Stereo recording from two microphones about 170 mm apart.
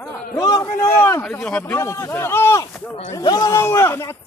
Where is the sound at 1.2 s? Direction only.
5° left (ahead or behind).